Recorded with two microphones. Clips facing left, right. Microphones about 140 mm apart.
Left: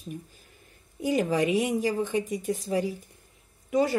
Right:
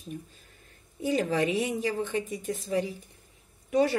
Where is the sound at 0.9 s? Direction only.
10° left (ahead or behind).